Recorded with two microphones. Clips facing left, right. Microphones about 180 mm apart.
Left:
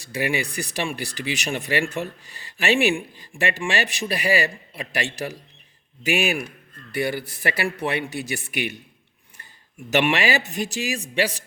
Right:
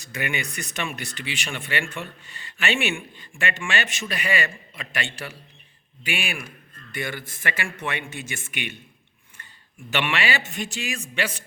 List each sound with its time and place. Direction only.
0.0 s speech: 30° left (ahead or behind)
9.9 s speech: 40° left (ahead or behind)